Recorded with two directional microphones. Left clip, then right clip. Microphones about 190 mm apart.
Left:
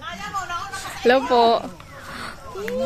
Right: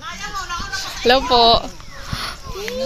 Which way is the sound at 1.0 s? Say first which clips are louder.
Right 2 dB; 10° left (ahead or behind).